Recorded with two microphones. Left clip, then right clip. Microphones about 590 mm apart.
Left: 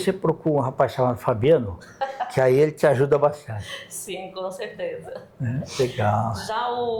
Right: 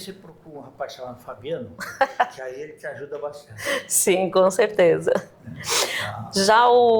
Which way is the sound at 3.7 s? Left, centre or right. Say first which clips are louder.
Right 15 dB; right.